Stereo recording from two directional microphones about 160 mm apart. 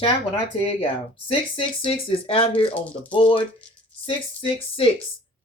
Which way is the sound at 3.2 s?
35° left (ahead or behind).